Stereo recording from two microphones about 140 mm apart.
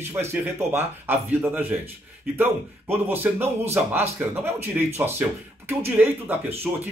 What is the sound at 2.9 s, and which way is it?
Speech, 15° right (ahead or behind).